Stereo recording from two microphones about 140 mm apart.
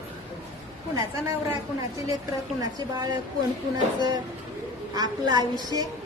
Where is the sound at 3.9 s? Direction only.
30° right (ahead or behind).